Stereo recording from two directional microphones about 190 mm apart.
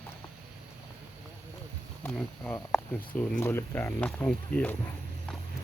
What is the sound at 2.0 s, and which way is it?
Speech, 5° left (ahead or behind).